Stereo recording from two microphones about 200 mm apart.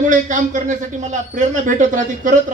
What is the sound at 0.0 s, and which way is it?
Speech, 40° right (ahead or behind).